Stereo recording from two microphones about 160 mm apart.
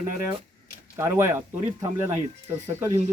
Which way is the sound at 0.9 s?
15° right (ahead or behind).